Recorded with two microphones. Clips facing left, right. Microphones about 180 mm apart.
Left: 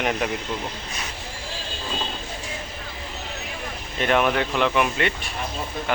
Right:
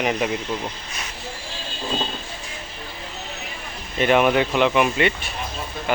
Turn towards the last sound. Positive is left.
turn(degrees=-5)  # may be behind; listen again after turning